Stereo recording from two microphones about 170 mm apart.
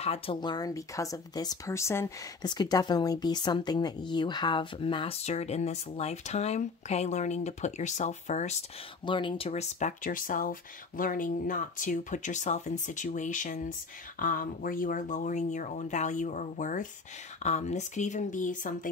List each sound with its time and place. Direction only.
0.0 s speech: 35° left (ahead or behind)
9.0 s speech: 30° left (ahead or behind); by 18.9 s 50° left (ahead or behind)